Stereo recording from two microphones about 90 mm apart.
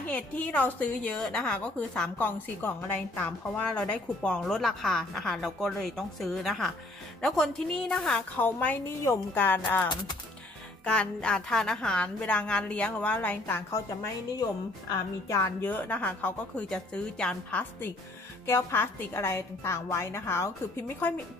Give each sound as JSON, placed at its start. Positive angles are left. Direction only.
{"t": 0.0, "sound": "a woman's voice", "side_deg": 15}
{"t": 1.1, "sound": "a woman's voice", "side_deg": 5}
{"t": 2.1, "sound": "a woman's voice", "side_deg": 20}
{"t": 8.4, "sound": "a woman's voice", "side_deg": 20}
{"t": 10.9, "sound": "a woman's voice", "side_deg": 10}
{"t": 13.7, "sound": "a woman's voice", "side_deg": 40}
{"t": 15.6, "sound": "a woman's voice", "side_deg": 20}
{"t": 18.5, "sound": "a woman's voice", "side_deg": 25}